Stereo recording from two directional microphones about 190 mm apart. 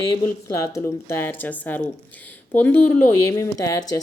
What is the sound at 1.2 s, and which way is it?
Speech, 10° left (ahead or behind).